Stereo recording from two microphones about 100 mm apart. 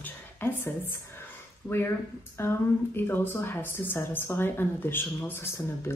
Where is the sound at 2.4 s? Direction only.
25° left (ahead or behind).